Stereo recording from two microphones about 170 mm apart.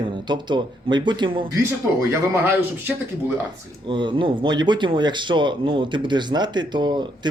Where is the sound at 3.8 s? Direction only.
30° right (ahead or behind).